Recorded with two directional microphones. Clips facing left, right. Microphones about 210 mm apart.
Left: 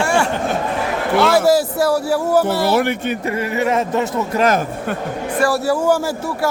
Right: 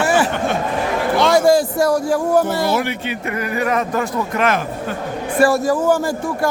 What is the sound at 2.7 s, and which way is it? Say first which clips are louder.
Speech: left 4 dB; 55° left (ahead or behind).